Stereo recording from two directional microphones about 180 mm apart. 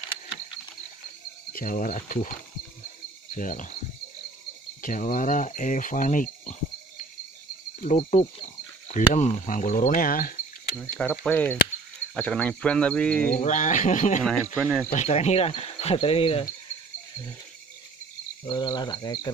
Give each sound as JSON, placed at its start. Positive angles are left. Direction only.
{"t": 1.5, "sound": "speech", "side_deg": 50}
{"t": 3.3, "sound": "speech", "side_deg": 45}
{"t": 4.8, "sound": "speech", "side_deg": 45}
{"t": 7.8, "sound": "cricket", "side_deg": 40}
{"t": 8.8, "sound": "speech", "side_deg": 40}
{"t": 10.8, "sound": "speech", "side_deg": 5}
{"t": 13.4, "sound": "speech", "side_deg": 45}
{"t": 14.6, "sound": "speech", "side_deg": -10}
{"t": 14.9, "sound": "cricket", "side_deg": 40}
{"t": 18.4, "sound": "cricket", "side_deg": 25}